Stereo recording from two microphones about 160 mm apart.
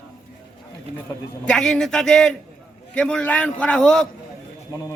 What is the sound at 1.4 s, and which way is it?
A man's voice, 5° left (ahead or behind).